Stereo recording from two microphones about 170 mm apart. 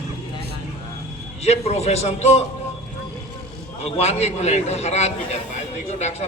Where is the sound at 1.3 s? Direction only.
40° left (ahead or behind).